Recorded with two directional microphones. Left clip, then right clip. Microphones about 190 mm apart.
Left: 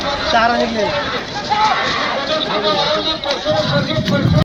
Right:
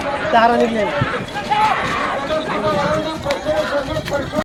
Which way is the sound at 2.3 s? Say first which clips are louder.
Left 3 dB; 65° right (ahead or behind).